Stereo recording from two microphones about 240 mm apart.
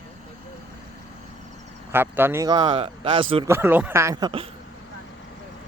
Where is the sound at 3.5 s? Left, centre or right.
Centre.